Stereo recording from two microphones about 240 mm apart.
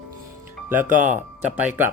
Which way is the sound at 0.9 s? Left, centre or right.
Right.